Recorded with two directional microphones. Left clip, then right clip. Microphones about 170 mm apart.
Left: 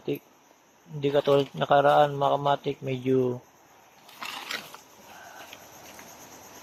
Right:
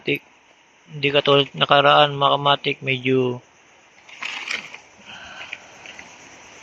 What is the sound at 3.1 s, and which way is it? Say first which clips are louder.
Speech: right 3 dB; 10° right (ahead or behind).